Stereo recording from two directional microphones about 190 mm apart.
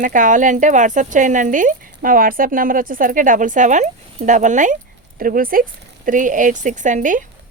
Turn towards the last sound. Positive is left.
turn(degrees=-45)  # may be behind; listen again after turning